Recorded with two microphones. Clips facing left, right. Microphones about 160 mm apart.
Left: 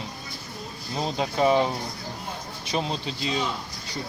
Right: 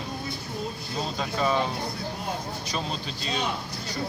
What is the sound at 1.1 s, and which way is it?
Speech, 25° left (ahead or behind).